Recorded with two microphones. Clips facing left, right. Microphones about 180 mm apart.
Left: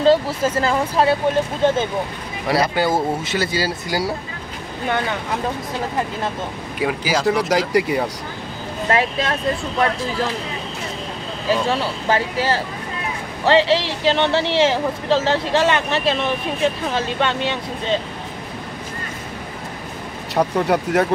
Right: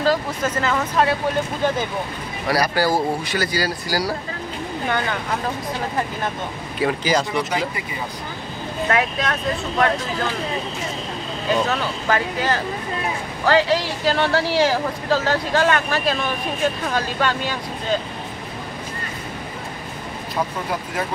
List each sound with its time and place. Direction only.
0.0 s speech: 30° left (ahead or behind)
6.8 s speech: 10° left (ahead or behind)
7.4 s speech: 85° left
8.8 s speech: 30° left (ahead or behind)
11.6 s speech: 30° left (ahead or behind)
20.3 s speech: 70° left (ahead or behind)